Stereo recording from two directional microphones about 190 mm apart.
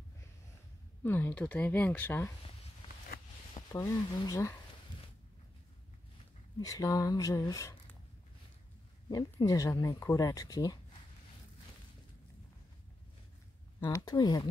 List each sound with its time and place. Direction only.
1.0 s speech: 10° left (ahead or behind)
3.7 s speech: 15° left (ahead or behind)
6.6 s speech: 15° left (ahead or behind)
9.1 s speech: 20° left (ahead or behind)
13.7 s speech: 20° left (ahead or behind)